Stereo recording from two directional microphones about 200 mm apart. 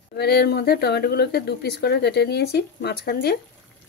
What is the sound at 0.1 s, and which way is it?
Speech, 55° left (ahead or behind).